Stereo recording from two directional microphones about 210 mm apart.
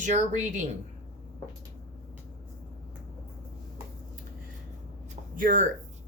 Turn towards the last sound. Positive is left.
turn(degrees=-40)  # may be behind; listen again after turning